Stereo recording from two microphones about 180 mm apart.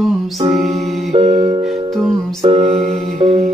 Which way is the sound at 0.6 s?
40° right (ahead or behind).